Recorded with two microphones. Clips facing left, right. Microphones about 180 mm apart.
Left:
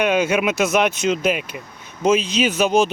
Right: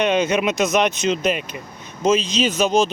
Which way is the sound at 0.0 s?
10° left (ahead or behind).